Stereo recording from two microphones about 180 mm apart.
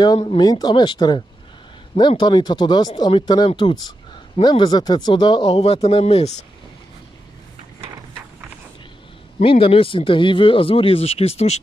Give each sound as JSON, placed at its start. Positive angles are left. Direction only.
{"t": 0.0, "sound": "speech", "side_deg": 25}
{"t": 9.4, "sound": "speech", "side_deg": 30}